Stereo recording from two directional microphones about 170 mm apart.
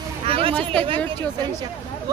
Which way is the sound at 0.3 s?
35° right (ahead or behind).